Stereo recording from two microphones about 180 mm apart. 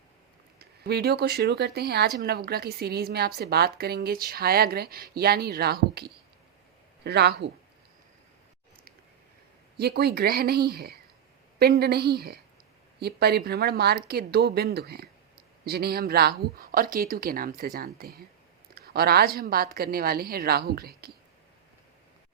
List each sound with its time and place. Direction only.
0.6 s speech: 65° right (ahead or behind)
9.7 s speech: 65° right (ahead or behind)